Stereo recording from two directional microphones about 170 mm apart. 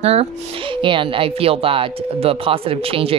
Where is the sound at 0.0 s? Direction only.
35° right (ahead or behind).